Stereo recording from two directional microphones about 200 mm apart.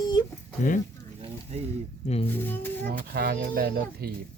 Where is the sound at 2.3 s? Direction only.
10° left (ahead or behind).